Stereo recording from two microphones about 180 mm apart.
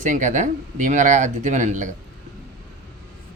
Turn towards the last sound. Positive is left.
turn(degrees=-40)  # may be behind; listen again after turning